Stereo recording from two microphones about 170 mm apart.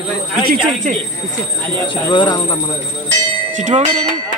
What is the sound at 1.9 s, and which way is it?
Speech, 25° left (ahead or behind).